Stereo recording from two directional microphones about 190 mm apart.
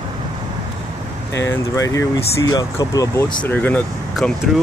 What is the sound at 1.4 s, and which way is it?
Speech, 15° left (ahead or behind).